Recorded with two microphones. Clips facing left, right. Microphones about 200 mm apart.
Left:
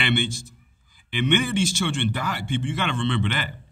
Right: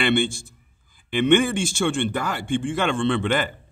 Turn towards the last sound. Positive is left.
turn(degrees=-50)  # may be behind; listen again after turning